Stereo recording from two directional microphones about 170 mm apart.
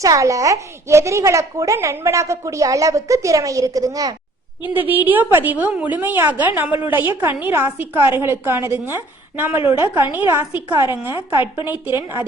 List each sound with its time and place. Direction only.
0.0 s a woman's voice: 20° right (ahead or behind)
11.9 s a woman's voice: 30° left (ahead or behind)